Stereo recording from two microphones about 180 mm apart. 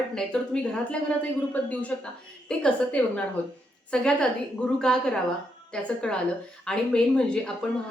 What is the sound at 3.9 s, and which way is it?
A woman's voice, 5° left (ahead or behind).